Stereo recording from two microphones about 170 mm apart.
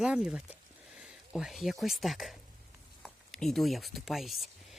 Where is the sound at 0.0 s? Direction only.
5° right (ahead or behind).